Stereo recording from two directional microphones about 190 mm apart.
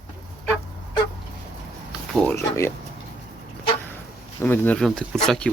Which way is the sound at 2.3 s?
15° left (ahead or behind).